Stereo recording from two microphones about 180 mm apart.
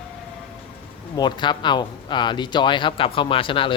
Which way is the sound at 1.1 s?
25° left (ahead or behind).